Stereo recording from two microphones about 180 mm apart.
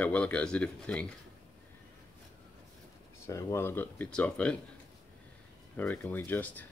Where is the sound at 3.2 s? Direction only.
15° left (ahead or behind).